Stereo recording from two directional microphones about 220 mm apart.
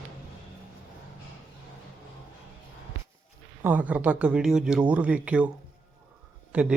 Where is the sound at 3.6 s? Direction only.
5° right (ahead or behind).